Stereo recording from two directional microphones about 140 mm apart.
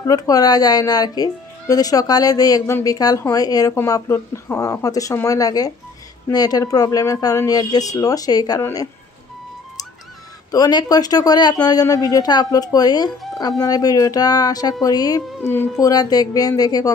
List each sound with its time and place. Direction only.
0.0 s speech: 25° left (ahead or behind)
10.5 s speech: 30° left (ahead or behind)